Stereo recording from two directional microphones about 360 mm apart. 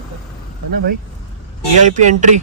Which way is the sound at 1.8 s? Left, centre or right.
Centre.